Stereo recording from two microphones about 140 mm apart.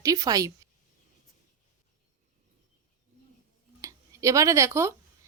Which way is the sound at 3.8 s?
25° right (ahead or behind).